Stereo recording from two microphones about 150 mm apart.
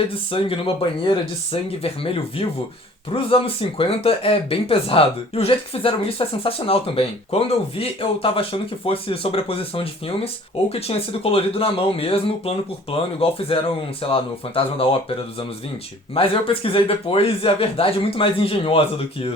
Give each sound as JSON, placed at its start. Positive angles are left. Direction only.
{"t": 0.3, "sound": "speech", "side_deg": 35}
{"t": 16.1, "sound": "speech", "side_deg": 40}